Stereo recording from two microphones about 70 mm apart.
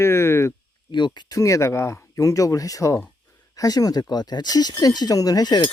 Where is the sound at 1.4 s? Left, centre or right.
Left.